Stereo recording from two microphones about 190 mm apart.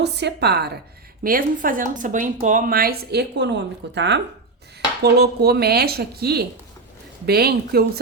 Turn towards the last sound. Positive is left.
turn(degrees=-55)  # may be behind; listen again after turning